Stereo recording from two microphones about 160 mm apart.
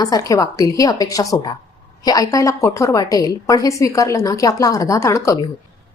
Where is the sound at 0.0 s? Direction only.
20° left (ahead or behind).